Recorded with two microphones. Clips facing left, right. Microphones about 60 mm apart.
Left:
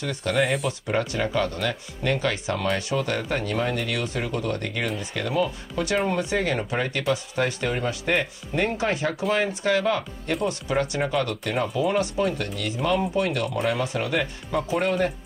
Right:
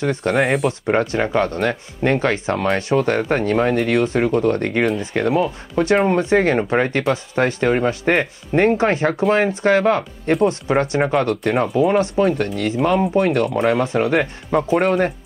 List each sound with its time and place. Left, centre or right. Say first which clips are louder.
0.0 s speech: right 9 dB; right
0.3 s speech: right 5 dB; right
0.7 s speech: right 7 dB; right
14.7 s speech: right 6 dB; right